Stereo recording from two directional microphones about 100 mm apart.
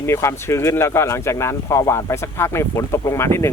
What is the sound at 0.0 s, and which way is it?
Speech, 30° left (ahead or behind).